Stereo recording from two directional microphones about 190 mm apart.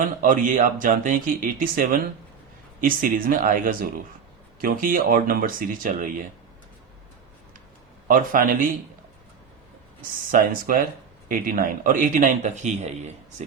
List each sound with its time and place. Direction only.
0.2 s speech: 45° right (ahead or behind)
8.0 s speech: 45° right (ahead or behind)
10.3 s speech: 45° right (ahead or behind)